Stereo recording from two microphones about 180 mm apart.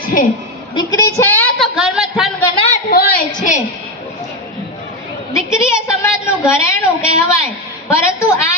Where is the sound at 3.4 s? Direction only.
40° left (ahead or behind).